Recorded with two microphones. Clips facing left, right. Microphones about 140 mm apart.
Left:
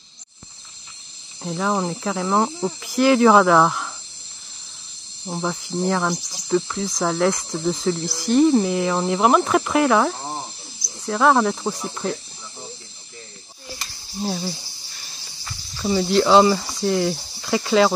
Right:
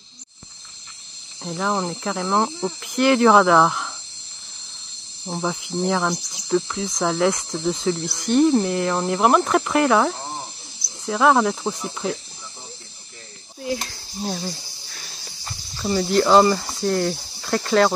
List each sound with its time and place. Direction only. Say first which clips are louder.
1.4 s cricket: left 1 dB; centre (ahead or behind)
5.2 s cricket: even; centre (ahead or behind)
14.2 s cricket: left 2 dB; 5° left (ahead or behind)
15.8 s speech: left 1 dB; centre (ahead or behind)